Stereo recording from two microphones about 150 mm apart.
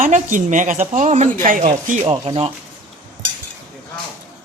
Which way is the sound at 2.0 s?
35° right (ahead or behind).